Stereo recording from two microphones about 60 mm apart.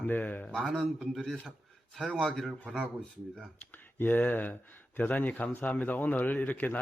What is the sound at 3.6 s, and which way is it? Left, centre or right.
A man's voice, left.